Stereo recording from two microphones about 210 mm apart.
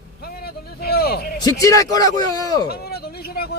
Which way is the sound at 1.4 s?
20° left (ahead or behind).